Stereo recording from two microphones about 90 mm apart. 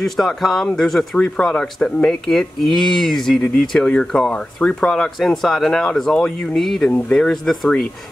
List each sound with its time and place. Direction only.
0.0 s speech: centre (ahead or behind)